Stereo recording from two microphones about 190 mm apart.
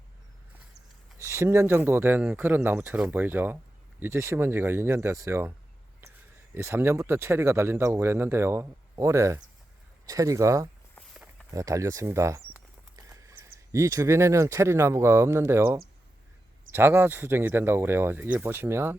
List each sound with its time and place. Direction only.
1.2 s speech: 15° right (ahead or behind)
11.1 s walk: centre (ahead or behind)
11.5 s speech: 15° right (ahead or behind)
13.1 s a sound: 15° right (ahead or behind)
13.7 s speech: 15° right (ahead or behind)